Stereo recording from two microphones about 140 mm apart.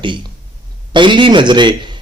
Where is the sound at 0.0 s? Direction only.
35° right (ahead or behind).